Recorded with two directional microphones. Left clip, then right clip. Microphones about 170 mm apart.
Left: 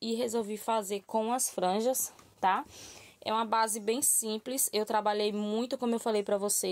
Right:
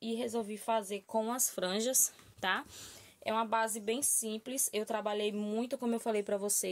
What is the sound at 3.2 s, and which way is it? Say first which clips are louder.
Speech: left 3 dB; 45° left (ahead or behind).